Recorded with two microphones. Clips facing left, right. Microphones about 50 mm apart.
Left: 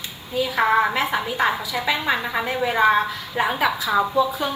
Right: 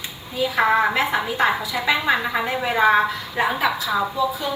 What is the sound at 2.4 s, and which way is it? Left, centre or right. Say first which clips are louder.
Speech: even; centre.